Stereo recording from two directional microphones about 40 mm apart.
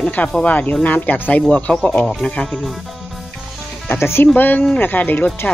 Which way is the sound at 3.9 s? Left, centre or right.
Left.